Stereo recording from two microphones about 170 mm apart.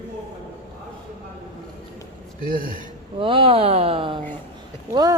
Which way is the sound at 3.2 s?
30° right (ahead or behind).